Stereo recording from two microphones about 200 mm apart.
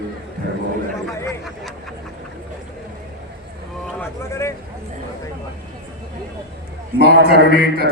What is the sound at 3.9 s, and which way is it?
Speech, 10° left (ahead or behind).